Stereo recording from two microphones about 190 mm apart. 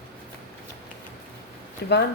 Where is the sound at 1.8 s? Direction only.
60° left (ahead or behind).